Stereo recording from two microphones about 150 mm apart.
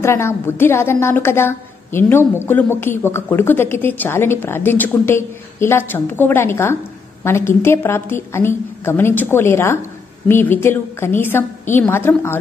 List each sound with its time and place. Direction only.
0.0 s a woman's voice: 15° left (ahead or behind)